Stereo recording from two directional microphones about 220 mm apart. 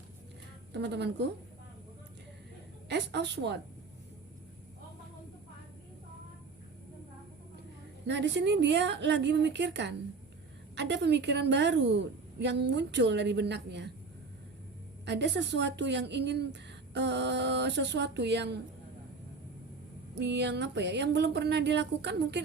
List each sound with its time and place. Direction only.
0.7 s speech: 50° right (ahead or behind)
2.9 s a woman's voice: 50° right (ahead or behind)
8.0 s speech: 55° right (ahead or behind)
15.0 s speech: 50° right (ahead or behind)
20.1 s speech: 50° right (ahead or behind)